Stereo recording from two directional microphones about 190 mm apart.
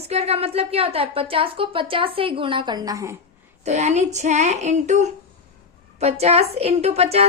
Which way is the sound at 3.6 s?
35° right (ahead or behind).